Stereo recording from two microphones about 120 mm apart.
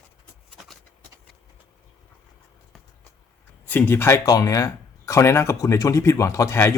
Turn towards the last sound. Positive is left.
turn(degrees=25)  # may be behind; listen again after turning